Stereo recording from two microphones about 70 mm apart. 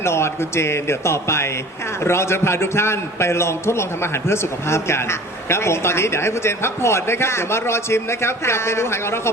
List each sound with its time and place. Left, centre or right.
0.0 s speech: left